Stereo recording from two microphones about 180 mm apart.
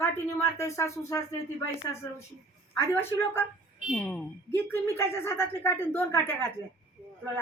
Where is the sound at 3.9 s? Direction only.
5° left (ahead or behind).